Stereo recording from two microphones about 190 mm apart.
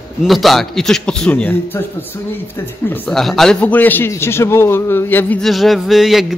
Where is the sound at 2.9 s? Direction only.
5° left (ahead or behind).